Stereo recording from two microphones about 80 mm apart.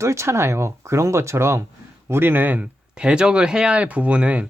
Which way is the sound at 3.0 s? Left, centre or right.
Centre.